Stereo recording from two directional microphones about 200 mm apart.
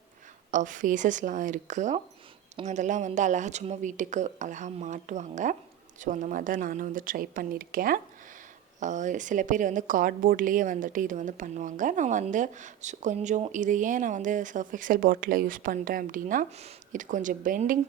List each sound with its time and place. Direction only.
0.5 s a woman's voice: 40° right (ahead or behind)